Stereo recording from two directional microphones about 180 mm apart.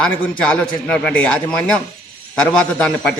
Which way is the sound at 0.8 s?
5° left (ahead or behind).